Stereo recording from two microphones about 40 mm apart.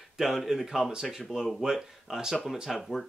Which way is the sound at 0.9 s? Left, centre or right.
Centre.